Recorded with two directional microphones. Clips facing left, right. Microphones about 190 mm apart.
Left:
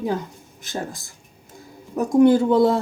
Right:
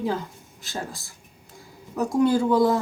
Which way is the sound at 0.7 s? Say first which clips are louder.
Left 4 dB; 20° left (ahead or behind).